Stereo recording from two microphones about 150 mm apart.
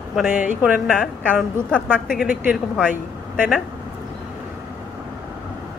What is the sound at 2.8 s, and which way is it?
Speech, 10° right (ahead or behind).